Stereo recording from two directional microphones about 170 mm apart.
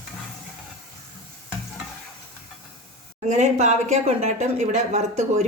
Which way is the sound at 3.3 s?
45° right (ahead or behind).